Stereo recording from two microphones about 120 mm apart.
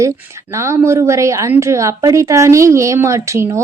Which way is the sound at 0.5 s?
25° right (ahead or behind).